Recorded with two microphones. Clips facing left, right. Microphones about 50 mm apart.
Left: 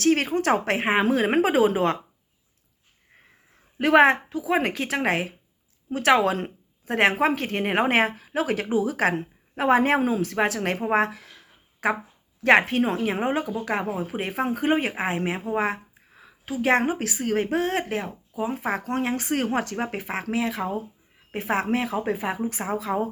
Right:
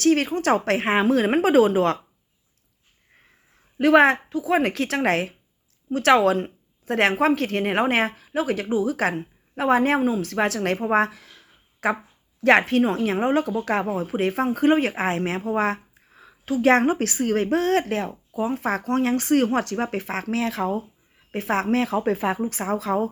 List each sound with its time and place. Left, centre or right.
0.0 s speech: left
3.8 s speech: left
7.9 s a woman's voice: left
11.1 s speech: left
11.3 s a sound: left
12.4 s speech: left
13.7 s speech: centre
14.1 s speech: centre
15.4 s a sound: centre
17.0 s speech: centre
18.5 s speech: centre
22.4 s speech: centre